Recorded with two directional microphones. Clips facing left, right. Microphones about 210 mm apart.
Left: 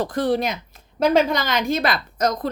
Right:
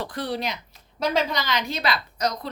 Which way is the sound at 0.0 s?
45° left (ahead or behind).